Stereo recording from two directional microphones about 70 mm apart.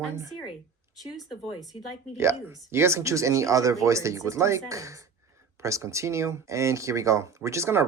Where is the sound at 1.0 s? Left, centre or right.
Centre.